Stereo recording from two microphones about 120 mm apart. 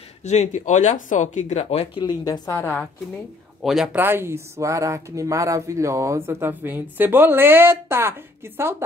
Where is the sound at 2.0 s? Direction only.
35° left (ahead or behind).